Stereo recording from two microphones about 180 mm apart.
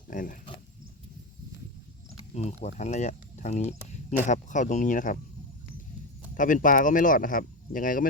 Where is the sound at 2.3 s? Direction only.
40° left (ahead or behind).